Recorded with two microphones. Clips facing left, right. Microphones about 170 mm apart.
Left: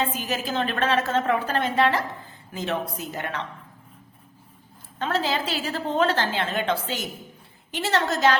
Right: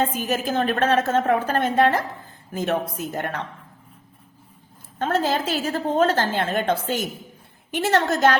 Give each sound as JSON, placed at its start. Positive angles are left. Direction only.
{"t": 0.0, "sound": "a woman's voice", "side_deg": -50}
{"t": 4.9, "sound": "a woman's voice", "side_deg": -50}